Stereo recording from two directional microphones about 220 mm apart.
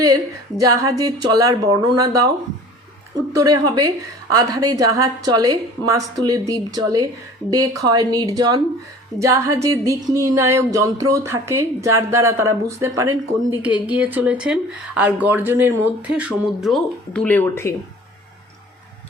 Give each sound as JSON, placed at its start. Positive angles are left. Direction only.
{"t": 0.0, "sound": "a woman's voice", "side_deg": -15}
{"t": 3.3, "sound": "a woman's voice", "side_deg": -15}